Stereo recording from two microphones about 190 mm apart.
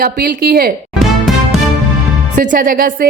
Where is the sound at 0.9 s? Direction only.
Centre (ahead or behind).